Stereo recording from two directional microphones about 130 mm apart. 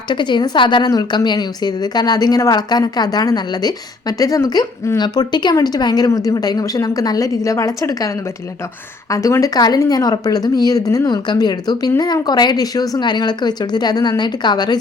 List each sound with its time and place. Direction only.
0.1 s a woman's voice: 35° left (ahead or behind)